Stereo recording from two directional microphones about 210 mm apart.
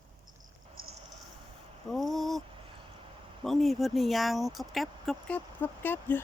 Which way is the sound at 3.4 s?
Centre (ahead or behind).